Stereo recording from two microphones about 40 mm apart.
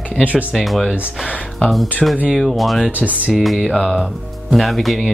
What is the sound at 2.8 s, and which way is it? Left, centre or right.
Speech, right.